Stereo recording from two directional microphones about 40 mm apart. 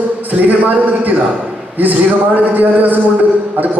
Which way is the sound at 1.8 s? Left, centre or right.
Right.